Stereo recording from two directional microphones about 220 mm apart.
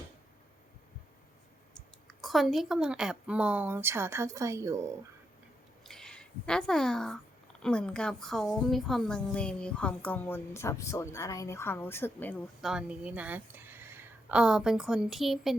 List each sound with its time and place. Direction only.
2.0 s a woman's voice: centre (ahead or behind)
5.8 s a sound: centre (ahead or behind)
7.6 s a woman's voice: 5° left (ahead or behind)
12.7 s a woman's voice: 5° right (ahead or behind)